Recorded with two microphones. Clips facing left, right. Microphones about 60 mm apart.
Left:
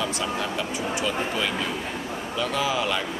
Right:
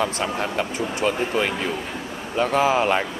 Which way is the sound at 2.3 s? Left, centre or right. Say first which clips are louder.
Right 7 dB; right.